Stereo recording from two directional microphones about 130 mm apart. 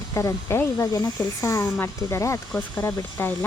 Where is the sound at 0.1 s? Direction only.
25° left (ahead or behind).